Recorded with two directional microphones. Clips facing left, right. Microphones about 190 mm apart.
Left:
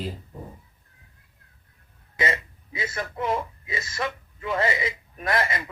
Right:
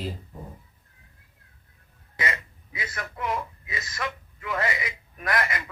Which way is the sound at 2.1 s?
25° left (ahead or behind).